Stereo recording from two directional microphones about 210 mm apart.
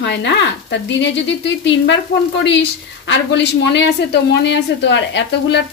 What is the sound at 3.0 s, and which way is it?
A woman's voice, 60° left (ahead or behind).